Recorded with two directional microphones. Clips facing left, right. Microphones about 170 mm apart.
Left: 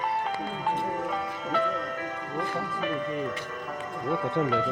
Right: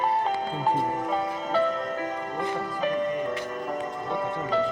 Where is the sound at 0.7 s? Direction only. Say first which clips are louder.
Right 3 dB; 35° right (ahead or behind).